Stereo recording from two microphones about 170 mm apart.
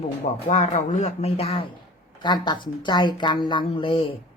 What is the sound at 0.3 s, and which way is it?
A woman's voice, 45° left (ahead or behind).